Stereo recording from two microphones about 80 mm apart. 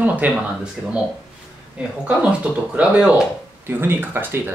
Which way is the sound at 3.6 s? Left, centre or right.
Right.